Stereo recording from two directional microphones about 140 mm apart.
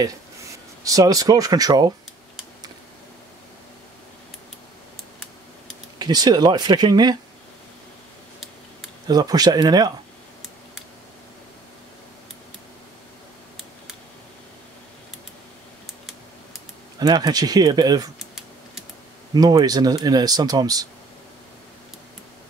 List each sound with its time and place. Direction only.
0.0 s speech: 25° right (ahead or behind)
5.9 s speech: 30° right (ahead or behind)
9.0 s speech: 30° right (ahead or behind)
17.0 s speech: 25° right (ahead or behind)
19.6 s speech: 25° right (ahead or behind)